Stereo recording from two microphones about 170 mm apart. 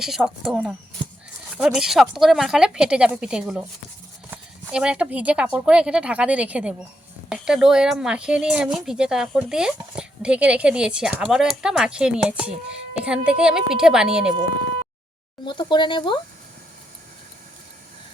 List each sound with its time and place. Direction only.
0.0 s speech: 5° right (ahead or behind)
15.4 s speech: 25° left (ahead or behind)